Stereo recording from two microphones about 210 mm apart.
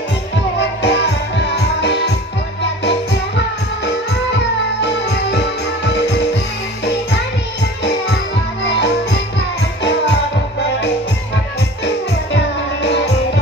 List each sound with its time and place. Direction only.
0.8 s music: 55° left (ahead or behind)
4.8 s music: 55° left (ahead or behind)
8.6 s music: 55° left (ahead or behind)
12.8 s music: 55° left (ahead or behind)